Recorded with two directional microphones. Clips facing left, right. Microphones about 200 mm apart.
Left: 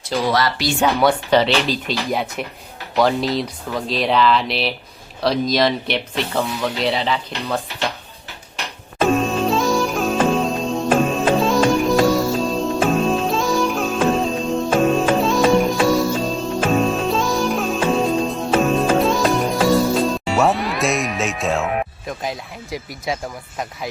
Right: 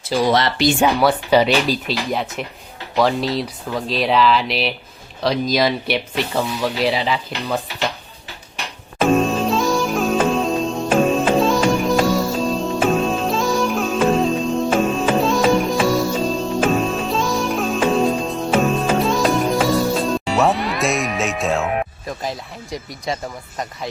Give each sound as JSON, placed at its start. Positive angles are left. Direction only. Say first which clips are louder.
{"t": 0.3, "sound": "speech", "louder": "right 3 dB", "side_deg": -20}
{"t": 0.9, "sound": "speech", "louder": "right 1 dB", "side_deg": -5}
{"t": 2.0, "sound": "speech", "louder": "left 1 dB", "side_deg": 0}
{"t": 9.0, "sound": "music", "louder": "right 1 dB", "side_deg": 0}